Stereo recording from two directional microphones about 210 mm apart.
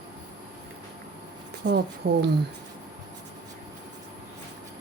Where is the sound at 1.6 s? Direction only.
55° right (ahead or behind).